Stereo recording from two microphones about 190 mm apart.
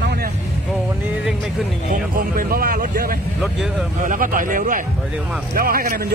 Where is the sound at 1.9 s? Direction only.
50° right (ahead or behind).